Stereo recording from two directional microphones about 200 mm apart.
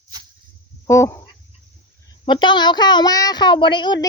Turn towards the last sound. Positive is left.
turn(degrees=20)  # may be behind; listen again after turning